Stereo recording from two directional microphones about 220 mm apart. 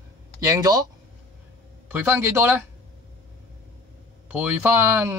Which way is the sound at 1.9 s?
10° right (ahead or behind).